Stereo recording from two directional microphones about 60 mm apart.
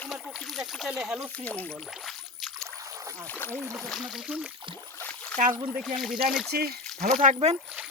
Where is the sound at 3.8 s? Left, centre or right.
Centre.